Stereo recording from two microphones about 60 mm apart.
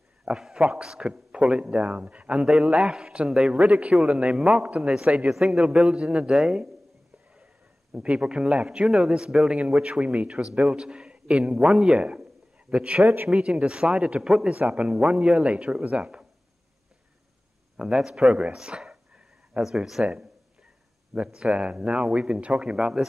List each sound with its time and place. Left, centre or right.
0.3 s a man's voice: centre
7.9 s a man's voice: centre
12.2 s a sound: centre
13.0 s speech: right
13.3 s a man's voice: centre
17.7 s speech: centre
19.6 s a man's voice: centre